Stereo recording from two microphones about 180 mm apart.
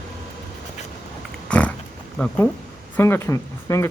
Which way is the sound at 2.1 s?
5° left (ahead or behind).